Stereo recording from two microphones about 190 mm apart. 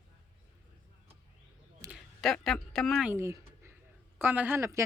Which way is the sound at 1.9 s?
Centre (ahead or behind).